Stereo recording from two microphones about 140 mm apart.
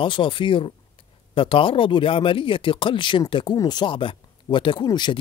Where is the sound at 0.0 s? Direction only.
35° left (ahead or behind).